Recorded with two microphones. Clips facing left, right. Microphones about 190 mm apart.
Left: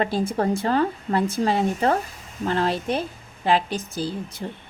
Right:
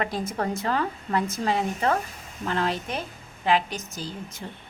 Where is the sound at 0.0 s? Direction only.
30° left (ahead or behind).